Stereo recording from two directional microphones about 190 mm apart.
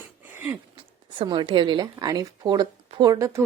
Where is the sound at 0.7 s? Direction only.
25° right (ahead or behind).